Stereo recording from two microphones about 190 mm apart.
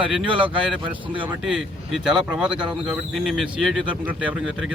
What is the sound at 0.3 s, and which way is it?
Speech, 25° right (ahead or behind).